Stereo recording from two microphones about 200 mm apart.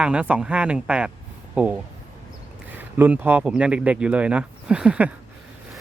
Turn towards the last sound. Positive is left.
turn(degrees=-5)  # may be behind; listen again after turning